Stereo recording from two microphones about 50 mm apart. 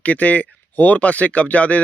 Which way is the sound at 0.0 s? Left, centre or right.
Left.